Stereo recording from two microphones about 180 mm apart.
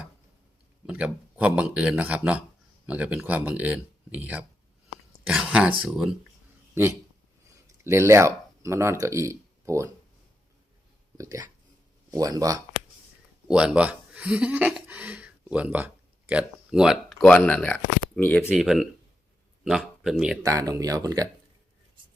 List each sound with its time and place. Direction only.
0.9 s speech: 5° right (ahead or behind)
4.9 s a sound: 5° right (ahead or behind)
5.8 s speech: 5° right (ahead or behind)
7.9 s speech: 15° right (ahead or behind)
11.2 s speech: 20° right (ahead or behind)
13.5 s speech: 5° right (ahead or behind)
20.4 s speech: 20° right (ahead or behind)